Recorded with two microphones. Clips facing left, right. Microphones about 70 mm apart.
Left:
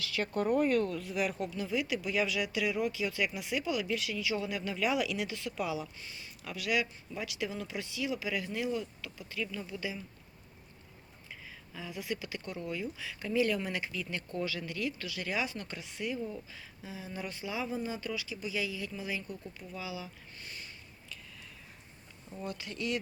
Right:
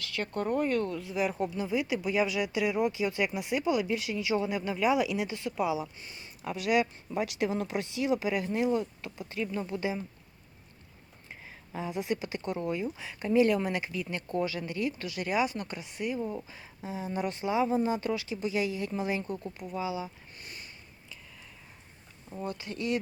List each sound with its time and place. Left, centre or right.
0.2 s speech: centre
0.9 s speech: centre; by 10.0 s right
11.4 s speech: right
19.7 s a sound: right
22.4 s speech: right